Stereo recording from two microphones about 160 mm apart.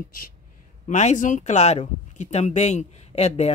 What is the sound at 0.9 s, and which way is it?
Speech, 45° left (ahead or behind).